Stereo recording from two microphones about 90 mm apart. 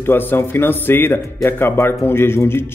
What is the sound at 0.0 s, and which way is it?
A man's voice, 25° left (ahead or behind).